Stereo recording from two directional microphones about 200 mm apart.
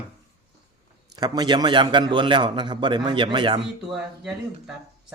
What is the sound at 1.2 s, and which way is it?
A man's voice, 20° right (ahead or behind).